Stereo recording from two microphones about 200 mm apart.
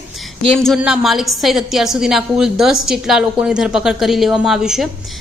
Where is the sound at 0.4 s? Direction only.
5° left (ahead or behind).